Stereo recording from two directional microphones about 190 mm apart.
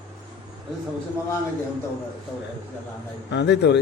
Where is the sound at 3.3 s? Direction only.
65° left (ahead or behind).